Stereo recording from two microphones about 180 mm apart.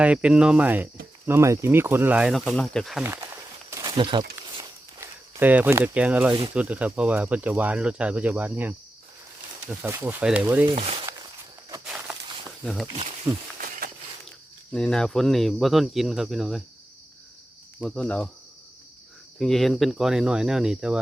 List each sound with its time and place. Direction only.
0.0 s speech: 5° right (ahead or behind)
3.0 s a sound: 15° right (ahead or behind)
4.9 s speech: 10° right (ahead or behind)
10.7 s speech: 30° right (ahead or behind)
11.9 s a sound: 5° right (ahead or behind)
12.6 s speech: centre (ahead or behind)
13.3 s speech: 15° right (ahead or behind)
13.6 s a sound: 50° right (ahead or behind)
14.7 s speech: 5° left (ahead or behind)
17.7 s speech: centre (ahead or behind)
19.4 s speech: centre (ahead or behind)